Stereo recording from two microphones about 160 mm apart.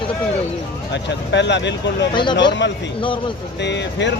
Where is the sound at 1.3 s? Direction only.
90° left.